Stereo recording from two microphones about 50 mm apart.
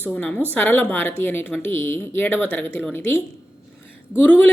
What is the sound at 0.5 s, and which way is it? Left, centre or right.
A woman's voice, left.